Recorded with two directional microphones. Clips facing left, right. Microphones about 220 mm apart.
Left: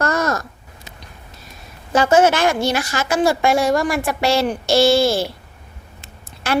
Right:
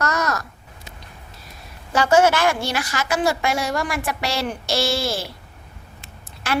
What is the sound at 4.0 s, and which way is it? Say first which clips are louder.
Speech: left 7 dB; 25° left (ahead or behind).